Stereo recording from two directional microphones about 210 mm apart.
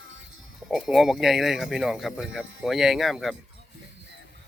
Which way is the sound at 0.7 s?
Centre (ahead or behind).